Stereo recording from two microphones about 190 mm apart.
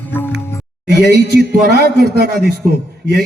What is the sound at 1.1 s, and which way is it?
A man's voice, 55° right (ahead or behind).